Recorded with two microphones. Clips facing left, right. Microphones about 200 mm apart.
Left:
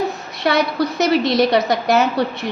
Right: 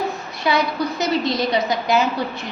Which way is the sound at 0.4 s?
75° left (ahead or behind).